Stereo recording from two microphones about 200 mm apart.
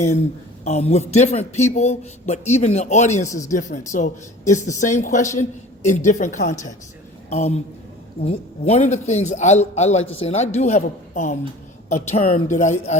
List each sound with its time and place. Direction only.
0.6 s speech: 35° left (ahead or behind)